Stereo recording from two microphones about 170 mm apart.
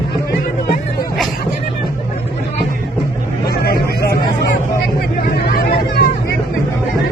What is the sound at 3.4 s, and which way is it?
Vehicle, 65° left (ahead or behind).